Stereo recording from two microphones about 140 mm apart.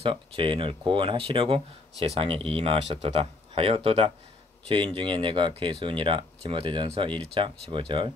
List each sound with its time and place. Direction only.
0.0 s speech: 40° right (ahead or behind)